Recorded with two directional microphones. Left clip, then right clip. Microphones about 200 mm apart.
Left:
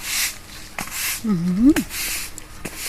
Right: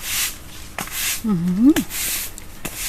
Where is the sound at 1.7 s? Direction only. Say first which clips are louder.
Right 1 dB; 30° right (ahead or behind).